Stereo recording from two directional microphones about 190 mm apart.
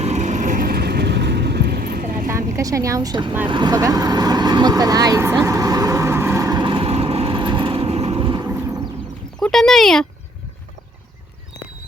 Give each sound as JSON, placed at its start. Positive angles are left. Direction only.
{"t": 0.0, "sound": "vehicle", "side_deg": -35}
{"t": 2.3, "sound": "speech", "side_deg": -15}
{"t": 3.5, "sound": "vehicle", "side_deg": -20}
{"t": 9.4, "sound": "speech", "side_deg": 0}